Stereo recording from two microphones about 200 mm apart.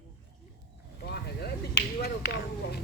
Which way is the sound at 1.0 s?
55° left (ahead or behind).